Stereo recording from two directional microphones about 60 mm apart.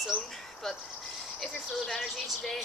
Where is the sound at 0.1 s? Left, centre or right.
Left.